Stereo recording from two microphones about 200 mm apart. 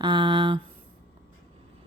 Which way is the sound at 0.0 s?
25° right (ahead or behind).